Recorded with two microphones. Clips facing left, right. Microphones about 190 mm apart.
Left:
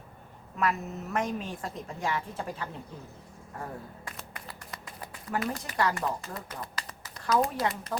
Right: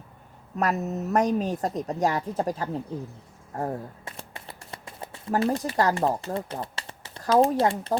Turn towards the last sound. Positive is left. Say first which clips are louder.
# right 8 dB
turn(degrees=-30)  # may be behind; listen again after turning